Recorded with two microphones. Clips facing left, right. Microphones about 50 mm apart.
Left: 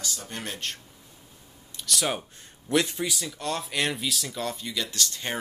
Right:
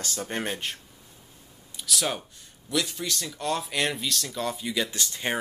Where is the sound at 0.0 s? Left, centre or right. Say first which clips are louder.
Right 5 dB; right.